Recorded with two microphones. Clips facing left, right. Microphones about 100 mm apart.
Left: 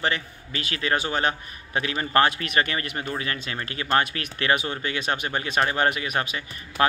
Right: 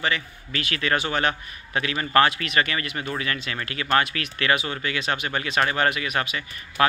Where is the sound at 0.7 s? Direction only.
25° left (ahead or behind).